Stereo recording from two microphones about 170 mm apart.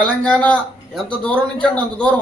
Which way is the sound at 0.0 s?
10° left (ahead or behind).